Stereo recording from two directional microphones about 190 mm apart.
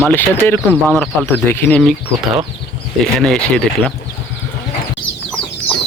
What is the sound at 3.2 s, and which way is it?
Speech, 5° left (ahead or behind).